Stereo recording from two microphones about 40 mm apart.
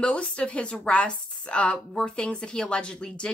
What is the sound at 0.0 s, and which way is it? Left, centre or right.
A woman's voice, left.